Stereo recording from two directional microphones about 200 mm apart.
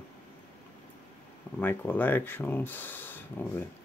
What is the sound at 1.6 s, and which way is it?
Speech, 10° left (ahead or behind).